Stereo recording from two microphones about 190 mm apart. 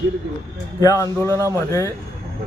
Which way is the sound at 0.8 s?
15° left (ahead or behind).